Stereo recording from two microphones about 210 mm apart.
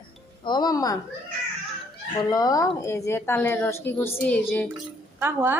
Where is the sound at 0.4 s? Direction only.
20° left (ahead or behind).